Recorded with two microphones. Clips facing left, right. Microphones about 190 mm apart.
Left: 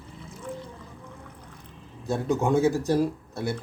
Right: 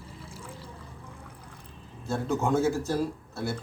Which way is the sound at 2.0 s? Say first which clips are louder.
Left 3 dB; 15° left (ahead or behind).